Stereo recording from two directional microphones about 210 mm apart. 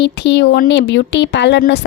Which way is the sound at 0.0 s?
55° left (ahead or behind).